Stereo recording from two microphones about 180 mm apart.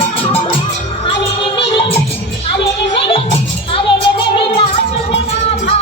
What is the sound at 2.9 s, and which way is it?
Music, 30° left (ahead or behind).